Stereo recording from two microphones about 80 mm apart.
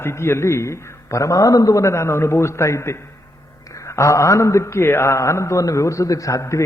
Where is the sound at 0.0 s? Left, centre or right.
Left.